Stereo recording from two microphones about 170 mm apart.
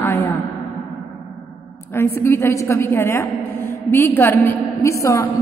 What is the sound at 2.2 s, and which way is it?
A woman's voice, 15° left (ahead or behind).